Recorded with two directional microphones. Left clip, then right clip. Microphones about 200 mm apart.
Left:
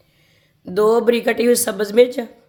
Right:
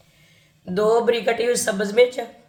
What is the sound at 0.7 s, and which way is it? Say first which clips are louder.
A woman's voice: left 3 dB; 50° left (ahead or behind).